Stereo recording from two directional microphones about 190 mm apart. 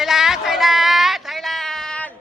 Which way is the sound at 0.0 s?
Centre (ahead or behind).